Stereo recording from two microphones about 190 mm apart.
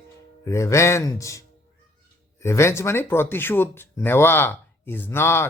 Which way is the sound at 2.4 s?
15° left (ahead or behind).